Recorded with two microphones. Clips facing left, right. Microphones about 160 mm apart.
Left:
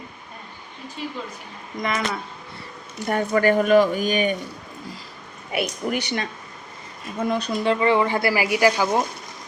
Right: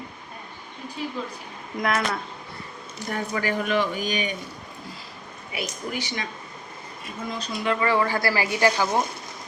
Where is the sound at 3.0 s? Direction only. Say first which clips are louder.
Left 8 dB; 55° left (ahead or behind).